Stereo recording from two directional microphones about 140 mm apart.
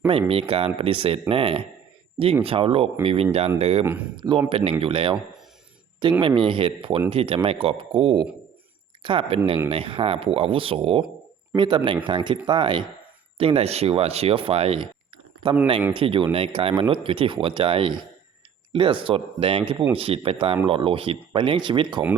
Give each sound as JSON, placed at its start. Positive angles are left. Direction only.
{"t": 0.1, "sound": "speech", "side_deg": -40}
{"t": 4.2, "sound": "speech", "side_deg": -35}
{"t": 13.4, "sound": "speech", "side_deg": -45}